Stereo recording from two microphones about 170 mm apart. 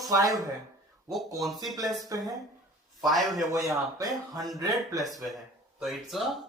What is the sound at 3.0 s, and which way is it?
Speech, centre (ahead or behind).